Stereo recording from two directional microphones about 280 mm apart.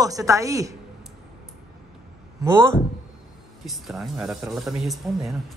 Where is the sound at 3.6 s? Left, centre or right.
Centre.